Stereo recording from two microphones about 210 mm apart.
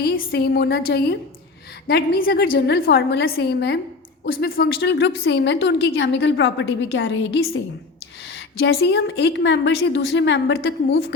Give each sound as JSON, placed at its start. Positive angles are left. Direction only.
{"t": 0.0, "sound": "a woman's voice", "side_deg": 50}
{"t": 8.3, "sound": "a sound", "side_deg": 65}
{"t": 8.7, "sound": "a woman's voice", "side_deg": 50}